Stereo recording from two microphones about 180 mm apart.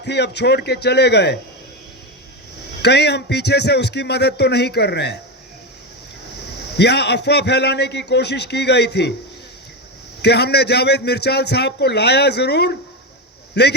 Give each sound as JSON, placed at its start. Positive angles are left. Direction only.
{"t": 0.0, "sound": "a man's voice", "side_deg": 70}
{"t": 2.8, "sound": "a man's voice", "side_deg": 65}
{"t": 6.7, "sound": "a man's voice", "side_deg": 65}
{"t": 10.2, "sound": "a man's voice", "side_deg": 65}